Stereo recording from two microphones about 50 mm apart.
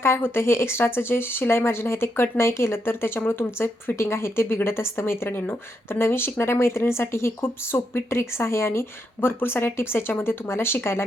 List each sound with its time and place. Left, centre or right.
0.0 s speech: left
3.6 s speech: left